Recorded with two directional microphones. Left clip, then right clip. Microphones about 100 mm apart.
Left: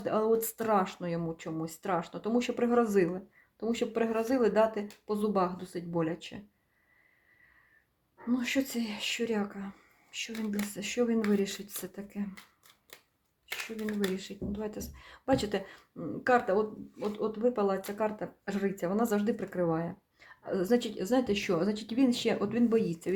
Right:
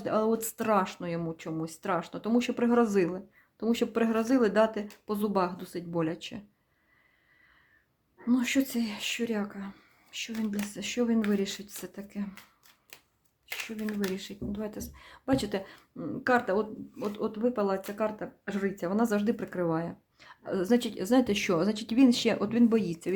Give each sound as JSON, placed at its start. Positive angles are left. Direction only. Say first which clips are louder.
{"t": 0.0, "sound": "speech", "louder": "even", "side_deg": -25}
{"t": 3.7, "sound": "speech", "louder": "right 2 dB", "side_deg": -35}
{"t": 8.3, "sound": "speech", "louder": "right 3 dB", "side_deg": -25}
{"t": 13.7, "sound": "speech", "louder": "left 1 dB", "side_deg": -15}
{"t": 16.2, "sound": "speech", "louder": "even", "side_deg": -20}
{"t": 16.6, "sound": "speech", "louder": "even", "side_deg": -35}